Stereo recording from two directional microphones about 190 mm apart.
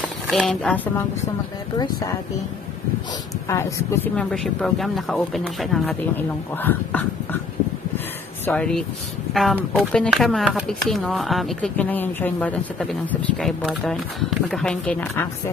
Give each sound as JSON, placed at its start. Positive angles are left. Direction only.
{"t": 0.3, "sound": "speech", "side_deg": 5}
{"t": 1.8, "sound": "speech", "side_deg": 20}
{"t": 3.4, "sound": "speech", "side_deg": 15}
{"t": 8.5, "sound": "speech", "side_deg": 5}